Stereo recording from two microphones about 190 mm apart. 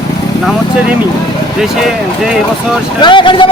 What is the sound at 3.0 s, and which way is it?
Speech, 25° left (ahead or behind).